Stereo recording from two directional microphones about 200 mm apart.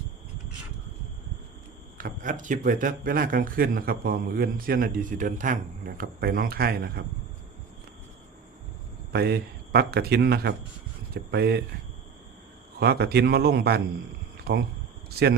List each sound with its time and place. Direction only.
2.0 s speech: 40° right (ahead or behind)
9.1 s speech: 55° right (ahead or behind)
12.8 s speech: 55° right (ahead or behind)
14.3 s a sound: 50° right (ahead or behind)